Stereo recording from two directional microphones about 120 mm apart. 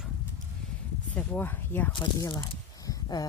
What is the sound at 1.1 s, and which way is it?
Speech, 15° left (ahead or behind).